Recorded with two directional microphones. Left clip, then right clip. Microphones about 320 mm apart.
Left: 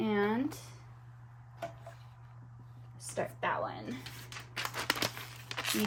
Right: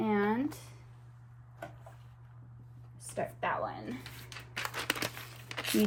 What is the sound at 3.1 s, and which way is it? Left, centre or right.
Crumpling, centre.